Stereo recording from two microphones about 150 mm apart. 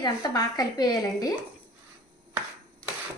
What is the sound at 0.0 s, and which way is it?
Speech, 25° left (ahead or behind).